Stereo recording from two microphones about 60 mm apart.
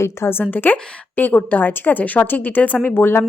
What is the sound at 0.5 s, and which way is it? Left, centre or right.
A woman's voice, left.